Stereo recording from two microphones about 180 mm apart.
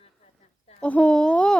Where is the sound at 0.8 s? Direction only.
5° left (ahead or behind).